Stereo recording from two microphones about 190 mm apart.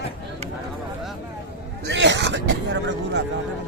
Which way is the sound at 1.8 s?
70° right (ahead or behind).